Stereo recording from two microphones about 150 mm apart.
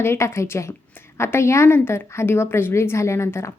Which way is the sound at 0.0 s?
15° left (ahead or behind).